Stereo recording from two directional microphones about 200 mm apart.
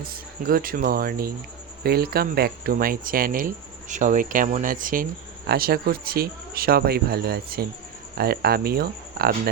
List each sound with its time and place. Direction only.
0.0 s speech: 45° right (ahead or behind)